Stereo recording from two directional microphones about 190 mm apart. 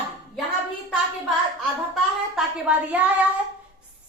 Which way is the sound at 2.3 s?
5° right (ahead or behind).